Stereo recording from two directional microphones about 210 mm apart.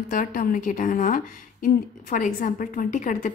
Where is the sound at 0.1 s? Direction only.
40° left (ahead or behind).